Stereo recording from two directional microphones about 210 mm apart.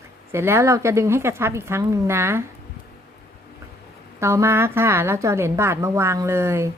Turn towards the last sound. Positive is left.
turn(degrees=-10)  # may be behind; listen again after turning